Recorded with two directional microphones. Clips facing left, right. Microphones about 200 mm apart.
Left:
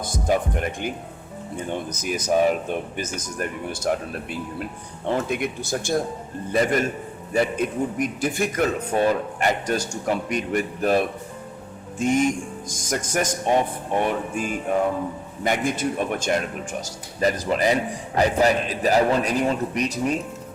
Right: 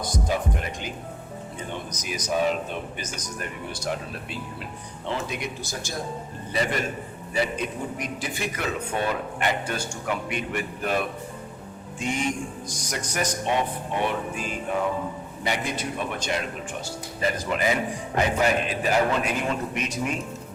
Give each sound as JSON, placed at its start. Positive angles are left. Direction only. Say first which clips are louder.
{"t": 0.0, "sound": "a man's voice", "louder": "left 4 dB", "side_deg": 50}
{"t": 2.0, "sound": "a man's voice", "louder": "left 6 dB", "side_deg": 55}
{"t": 3.7, "sound": "a man's voice", "louder": "left 5 dB", "side_deg": 50}